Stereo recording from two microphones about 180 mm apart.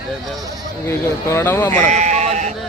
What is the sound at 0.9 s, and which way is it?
Speech, 15° left (ahead or behind).